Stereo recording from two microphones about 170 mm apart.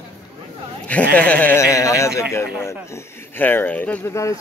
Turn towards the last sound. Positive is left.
turn(degrees=15)  # may be behind; listen again after turning